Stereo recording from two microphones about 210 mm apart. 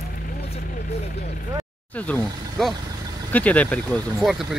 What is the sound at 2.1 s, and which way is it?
Speech, 5° left (ahead or behind).